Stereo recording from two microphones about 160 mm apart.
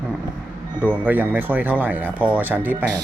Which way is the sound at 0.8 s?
10° right (ahead or behind).